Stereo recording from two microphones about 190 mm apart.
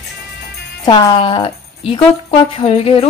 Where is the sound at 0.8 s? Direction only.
25° left (ahead or behind).